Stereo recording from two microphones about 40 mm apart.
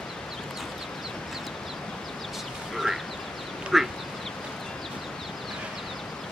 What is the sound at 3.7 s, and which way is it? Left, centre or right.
Duck, centre.